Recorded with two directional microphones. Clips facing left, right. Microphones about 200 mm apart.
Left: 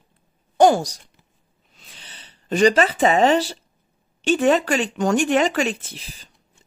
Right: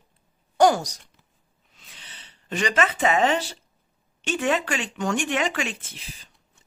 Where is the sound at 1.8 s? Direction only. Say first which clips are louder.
Left 3 dB; 35° left (ahead or behind).